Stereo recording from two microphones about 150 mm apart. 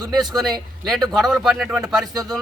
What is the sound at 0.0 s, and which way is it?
Speech, centre (ahead or behind).